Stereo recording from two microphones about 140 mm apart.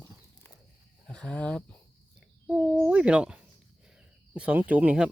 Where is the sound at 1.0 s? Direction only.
5° left (ahead or behind).